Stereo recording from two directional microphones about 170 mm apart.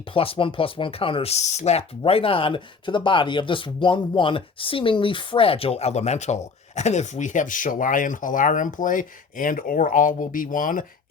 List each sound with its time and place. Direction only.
0.1 s speech: 30° left (ahead or behind); by 10.8 s 55° left (ahead or behind)